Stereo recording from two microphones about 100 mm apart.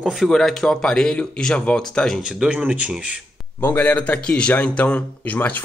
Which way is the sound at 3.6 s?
20° left (ahead or behind).